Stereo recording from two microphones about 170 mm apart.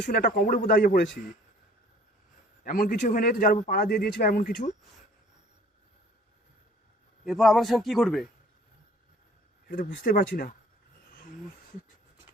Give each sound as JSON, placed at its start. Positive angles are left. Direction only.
{"t": 0.2, "sound": "speech", "side_deg": 50}
{"t": 2.6, "sound": "a man's voice", "side_deg": 55}
{"t": 7.3, "sound": "a man's voice", "side_deg": 0}
{"t": 9.6, "sound": "speech", "side_deg": 55}